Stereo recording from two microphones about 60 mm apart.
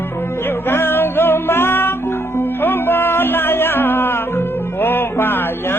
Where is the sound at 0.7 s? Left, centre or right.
Left.